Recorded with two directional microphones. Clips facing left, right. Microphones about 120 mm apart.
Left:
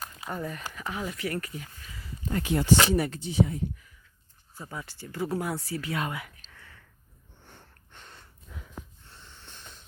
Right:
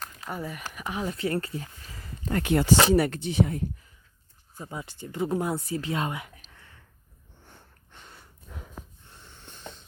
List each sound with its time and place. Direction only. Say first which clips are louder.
0.3 s speech: even; 5° right (ahead or behind)
0.7 s speech: right 3 dB; 15° right (ahead or behind); by 2.0 s 35° right (ahead or behind)
2.2 s speech: right 3 dB; 65° right (ahead or behind)
4.5 s speech: right 2 dB; 15° right (ahead or behind)
7.9 s a sound: even; 5° right (ahead or behind)
8.4 s snort: right 3 dB; 45° right (ahead or behind)
9.1 s wheeze: right 1 dB; 15° right (ahead or behind)